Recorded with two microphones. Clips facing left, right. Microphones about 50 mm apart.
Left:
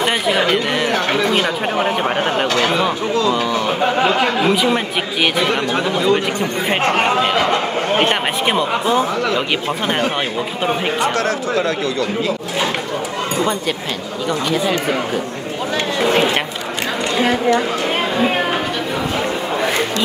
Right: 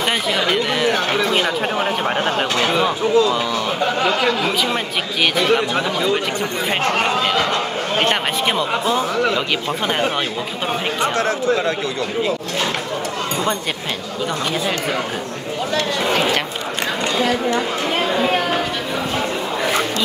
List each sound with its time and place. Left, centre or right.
0.5 s speech: centre
3.5 s speech: centre
6.8 s speech: left
8.0 s speech: centre
11.0 s speech: right